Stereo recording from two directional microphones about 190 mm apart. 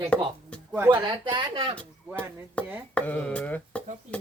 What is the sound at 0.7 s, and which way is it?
Speech, 15° right (ahead or behind).